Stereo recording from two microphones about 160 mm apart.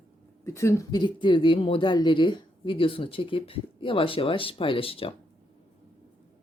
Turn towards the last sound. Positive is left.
turn(degrees=35)  # may be behind; listen again after turning